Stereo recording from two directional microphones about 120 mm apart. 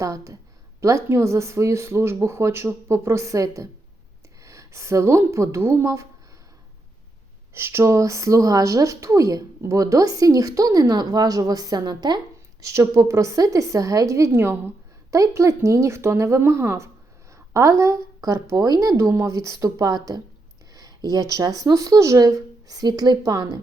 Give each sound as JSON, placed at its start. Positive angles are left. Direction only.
{"t": 0.0, "sound": "speech", "side_deg": -25}
{"t": 7.5, "sound": "a woman's voice", "side_deg": -20}